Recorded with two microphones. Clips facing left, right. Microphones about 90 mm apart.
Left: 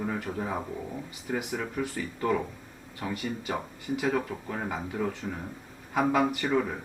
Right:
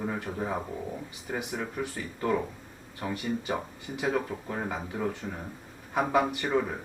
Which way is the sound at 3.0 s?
5° right (ahead or behind).